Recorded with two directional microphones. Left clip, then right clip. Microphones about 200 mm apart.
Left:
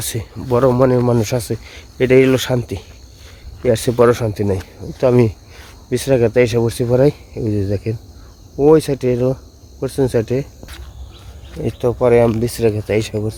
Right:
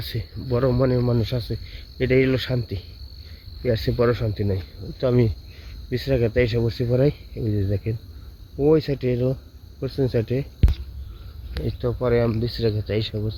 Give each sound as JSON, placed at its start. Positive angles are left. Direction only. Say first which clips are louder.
{"t": 0.0, "sound": "speech", "louder": "left 7 dB", "side_deg": 20}
{"t": 0.4, "sound": "speech", "louder": "left 8 dB", "side_deg": 10}
{"t": 1.1, "sound": "speech", "louder": "left 9 dB", "side_deg": 20}
{"t": 11.6, "sound": "speech", "louder": "left 9 dB", "side_deg": 10}